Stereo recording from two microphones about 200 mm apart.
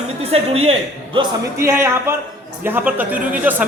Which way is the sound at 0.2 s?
30° right (ahead or behind).